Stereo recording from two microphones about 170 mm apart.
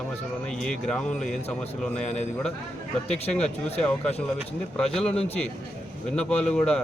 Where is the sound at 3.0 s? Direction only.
35° left (ahead or behind).